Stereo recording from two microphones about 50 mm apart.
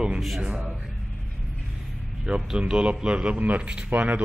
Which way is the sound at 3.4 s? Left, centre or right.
Right.